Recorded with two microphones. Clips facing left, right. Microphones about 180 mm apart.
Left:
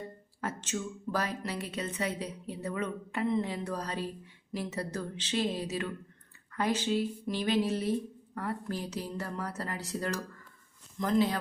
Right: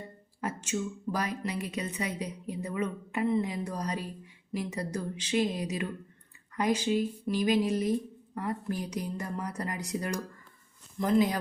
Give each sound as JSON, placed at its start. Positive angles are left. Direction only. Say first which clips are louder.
{"t": 0.4, "sound": "a woman's voice", "louder": "right 3 dB", "side_deg": -10}